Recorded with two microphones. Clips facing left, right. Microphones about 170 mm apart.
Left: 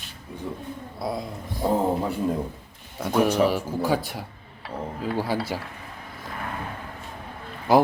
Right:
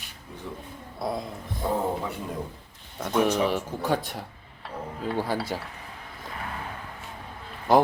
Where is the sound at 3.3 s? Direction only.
Centre (ahead or behind).